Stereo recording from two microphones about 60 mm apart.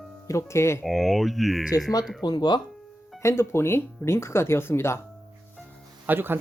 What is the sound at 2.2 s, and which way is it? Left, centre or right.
Speech, left.